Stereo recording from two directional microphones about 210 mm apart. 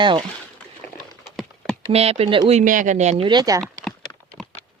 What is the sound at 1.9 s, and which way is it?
Speech, 30° right (ahead or behind).